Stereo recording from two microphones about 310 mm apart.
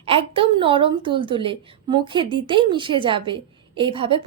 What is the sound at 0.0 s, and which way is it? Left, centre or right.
A woman's voice, centre.